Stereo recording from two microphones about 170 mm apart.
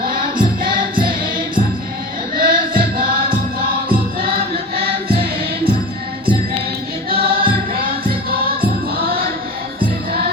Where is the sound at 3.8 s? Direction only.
60° right (ahead or behind).